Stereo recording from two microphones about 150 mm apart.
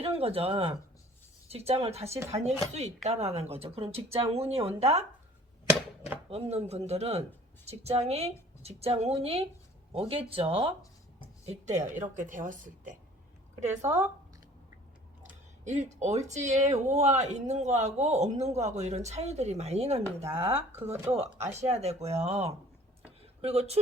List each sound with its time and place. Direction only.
0.0 s speech: 40° right (ahead or behind)
6.3 s speech: 45° right (ahead or behind)
11.4 s a woman's voice: 50° right (ahead or behind)
13.7 s speech: 15° right (ahead or behind)
15.6 s speech: 50° right (ahead or behind)
20.4 s speech: 15° right (ahead or behind)
21.5 s speech: 45° right (ahead or behind)